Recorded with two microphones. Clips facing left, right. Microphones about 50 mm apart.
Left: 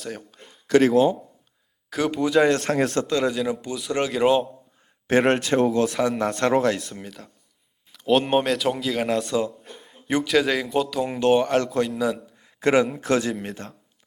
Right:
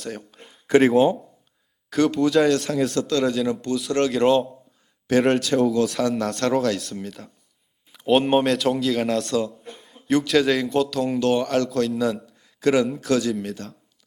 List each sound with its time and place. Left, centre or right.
0.0 s a sound: centre
0.7 s speech: centre
1.9 s a man's voice: centre
2.5 s speech: left
3.2 s a man's voice: centre
5.3 s speech: left
5.8 s speech: centre
6.7 s a man's voice: centre
7.9 s a man's voice: centre; by 11.9 s left
11.9 s a man's voice: centre
12.4 s a sound: left
13.0 s speech: left